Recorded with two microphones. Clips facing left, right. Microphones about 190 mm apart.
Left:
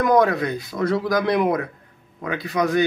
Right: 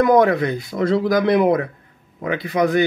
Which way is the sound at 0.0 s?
25° right (ahead or behind).